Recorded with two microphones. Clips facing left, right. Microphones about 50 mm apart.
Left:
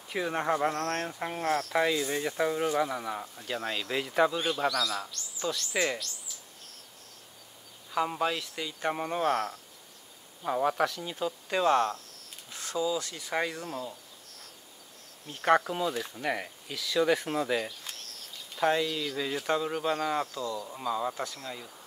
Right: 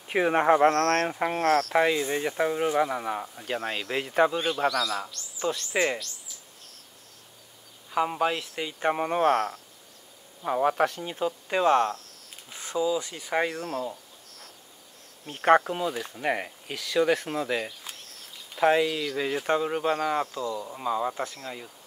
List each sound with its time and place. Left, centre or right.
0.1 s speech: right
0.7 s speech: right
1.0 s speech: right
1.3 s speech: right
1.7 s speech: right
7.9 s speech: centre
15.2 s speech: right
15.6 s speech: centre
16.2 s speech: right
16.7 s speech: centre